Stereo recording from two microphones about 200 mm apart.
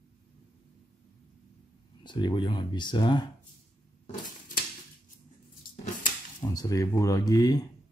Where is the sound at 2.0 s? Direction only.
25° left (ahead or behind).